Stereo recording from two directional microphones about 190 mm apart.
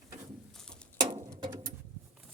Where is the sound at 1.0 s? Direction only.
20° right (ahead or behind).